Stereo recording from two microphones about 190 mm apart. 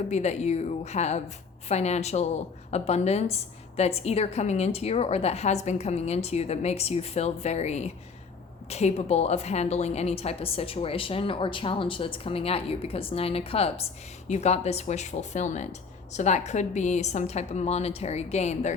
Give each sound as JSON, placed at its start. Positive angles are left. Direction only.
{"t": 0.1, "sound": "a woman's voice", "side_deg": 35}